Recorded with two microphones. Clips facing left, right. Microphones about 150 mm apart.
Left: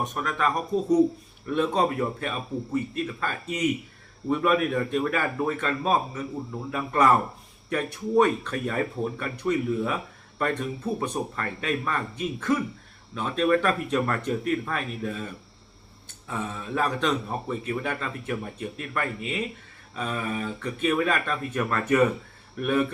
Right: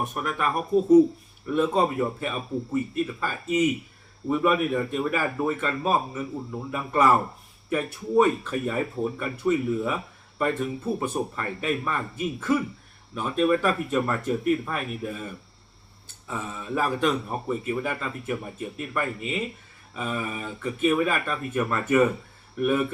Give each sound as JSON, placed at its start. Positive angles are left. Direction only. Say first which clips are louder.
{"t": 0.0, "sound": "speech", "louder": "left 1 dB", "side_deg": -5}
{"t": 16.3, "sound": "speech", "louder": "even", "side_deg": -5}